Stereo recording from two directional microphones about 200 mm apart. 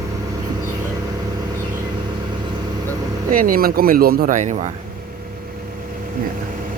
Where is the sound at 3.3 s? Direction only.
45° right (ahead or behind).